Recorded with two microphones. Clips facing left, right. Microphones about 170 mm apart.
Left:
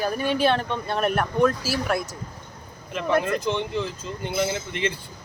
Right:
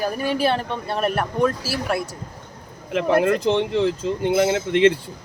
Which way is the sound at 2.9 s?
70° right (ahead or behind).